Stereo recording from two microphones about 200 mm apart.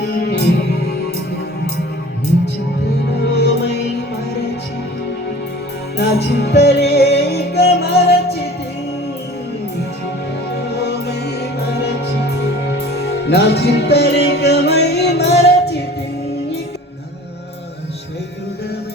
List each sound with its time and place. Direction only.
0.0 s music: 55° left (ahead or behind)
3.1 s music: 55° left (ahead or behind)
6.0 s music: 55° left (ahead or behind)
10.5 s music: 55° left (ahead or behind)